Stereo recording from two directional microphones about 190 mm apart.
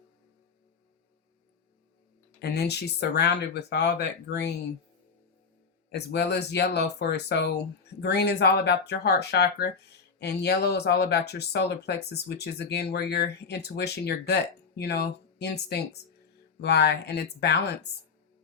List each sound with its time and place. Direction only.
2.4 s speech: 60° left (ahead or behind)
5.9 s speech: 60° left (ahead or behind)